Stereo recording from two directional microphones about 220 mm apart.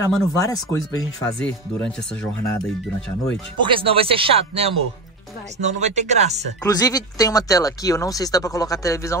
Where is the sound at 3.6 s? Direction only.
25° right (ahead or behind).